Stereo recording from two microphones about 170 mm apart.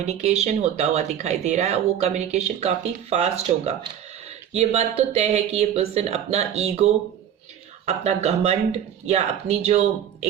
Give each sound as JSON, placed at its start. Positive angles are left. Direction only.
{"t": 0.0, "sound": "speech", "side_deg": -40}